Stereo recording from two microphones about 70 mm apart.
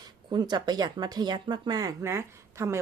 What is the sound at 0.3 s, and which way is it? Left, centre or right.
Speech, right.